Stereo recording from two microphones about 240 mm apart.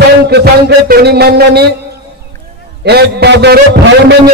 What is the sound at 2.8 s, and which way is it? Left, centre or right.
Speech, right.